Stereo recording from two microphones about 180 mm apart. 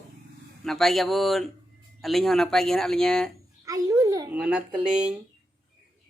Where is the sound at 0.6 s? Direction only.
Centre (ahead or behind).